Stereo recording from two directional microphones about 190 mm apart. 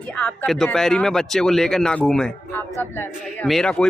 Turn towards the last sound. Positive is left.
turn(degrees=5)  # may be behind; listen again after turning